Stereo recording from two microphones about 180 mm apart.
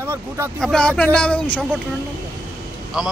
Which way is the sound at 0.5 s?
5° left (ahead or behind).